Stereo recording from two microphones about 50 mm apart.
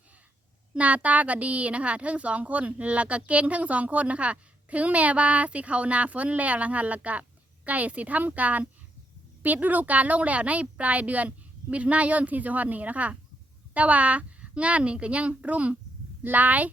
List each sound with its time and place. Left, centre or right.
0.7 s a woman's voice: right